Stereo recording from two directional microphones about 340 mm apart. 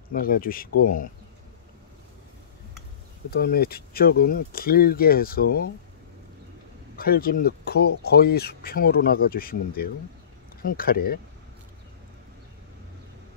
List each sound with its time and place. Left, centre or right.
0.1 s speech: left
3.3 s speech: left
7.0 s speech: left